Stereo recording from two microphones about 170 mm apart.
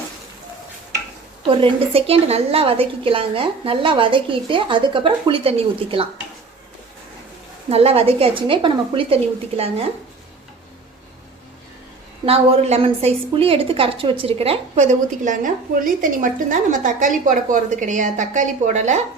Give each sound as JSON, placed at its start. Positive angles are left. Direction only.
{"t": 1.5, "sound": "a woman's voice", "side_deg": -35}
{"t": 7.7, "sound": "a woman's voice", "side_deg": -35}
{"t": 12.2, "sound": "a woman's voice", "side_deg": -35}